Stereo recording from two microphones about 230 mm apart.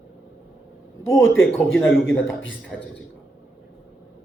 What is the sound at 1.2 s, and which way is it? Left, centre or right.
Speech, left.